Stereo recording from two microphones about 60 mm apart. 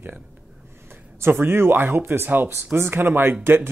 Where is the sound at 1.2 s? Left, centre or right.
Right.